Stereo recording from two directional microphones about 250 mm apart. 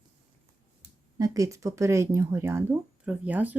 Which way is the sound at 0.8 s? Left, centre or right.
Centre.